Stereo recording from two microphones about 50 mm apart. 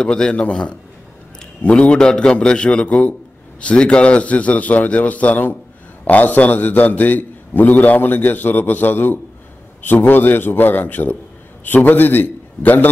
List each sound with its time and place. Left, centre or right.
0.0 s a man's voice: centre
1.8 s a man's voice: centre; by 12.9 s left